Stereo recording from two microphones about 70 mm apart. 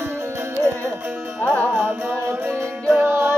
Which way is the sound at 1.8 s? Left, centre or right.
Right.